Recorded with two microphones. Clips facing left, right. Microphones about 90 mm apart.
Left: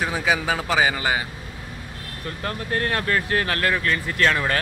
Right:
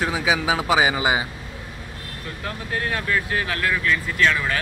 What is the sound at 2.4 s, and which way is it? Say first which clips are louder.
Speech: left 2 dB; 50° left (ahead or behind).